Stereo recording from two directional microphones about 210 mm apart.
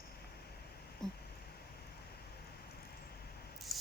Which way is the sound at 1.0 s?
Centre (ahead or behind).